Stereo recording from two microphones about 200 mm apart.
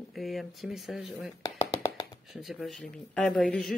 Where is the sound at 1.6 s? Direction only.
15° left (ahead or behind).